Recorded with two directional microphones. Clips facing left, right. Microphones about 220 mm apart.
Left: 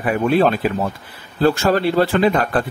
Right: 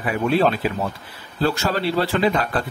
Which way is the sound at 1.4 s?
50° left (ahead or behind).